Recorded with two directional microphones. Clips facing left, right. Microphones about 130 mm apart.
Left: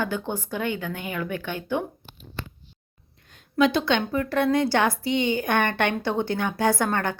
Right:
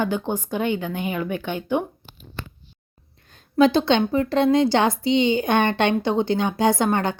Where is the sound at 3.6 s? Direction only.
30° right (ahead or behind).